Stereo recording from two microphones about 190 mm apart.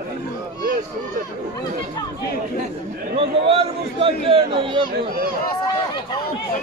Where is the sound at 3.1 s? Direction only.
30° right (ahead or behind).